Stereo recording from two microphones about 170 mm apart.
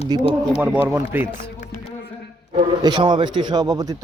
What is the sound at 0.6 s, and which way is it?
Speech, 10° right (ahead or behind).